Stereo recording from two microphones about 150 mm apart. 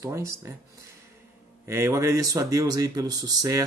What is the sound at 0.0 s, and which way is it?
Speech, 15° right (ahead or behind).